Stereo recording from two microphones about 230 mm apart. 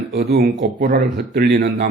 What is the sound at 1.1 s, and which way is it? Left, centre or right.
Speech, right.